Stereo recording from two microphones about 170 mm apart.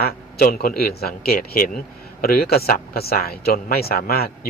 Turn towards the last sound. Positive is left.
turn(degrees=65)  # may be behind; listen again after turning